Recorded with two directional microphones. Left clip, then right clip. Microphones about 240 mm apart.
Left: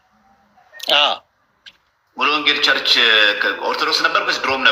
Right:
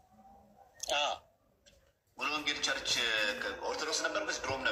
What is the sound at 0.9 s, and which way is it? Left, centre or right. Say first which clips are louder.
A man's voice: left 18 dB; left.